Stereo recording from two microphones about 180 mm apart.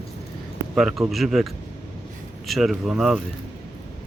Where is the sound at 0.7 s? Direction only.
Centre (ahead or behind).